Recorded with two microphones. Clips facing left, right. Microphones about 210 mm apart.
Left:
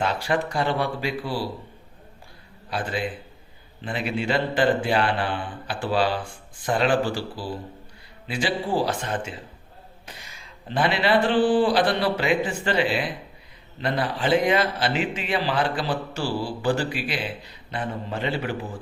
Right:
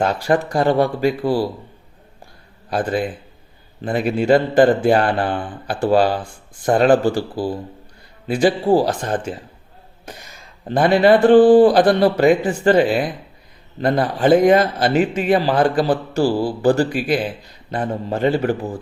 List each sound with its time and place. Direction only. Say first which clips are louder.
0.0 s a man's voice: right 7 dB; 45° right (ahead or behind)
2.6 s a man's voice: right 7 dB; 45° right (ahead or behind)